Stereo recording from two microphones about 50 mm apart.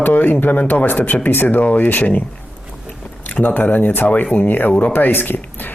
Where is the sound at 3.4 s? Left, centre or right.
Left.